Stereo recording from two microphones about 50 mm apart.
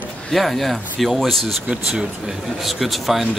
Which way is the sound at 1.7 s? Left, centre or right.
Centre.